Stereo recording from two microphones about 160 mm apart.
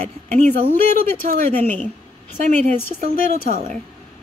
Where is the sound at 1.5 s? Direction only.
10° left (ahead or behind).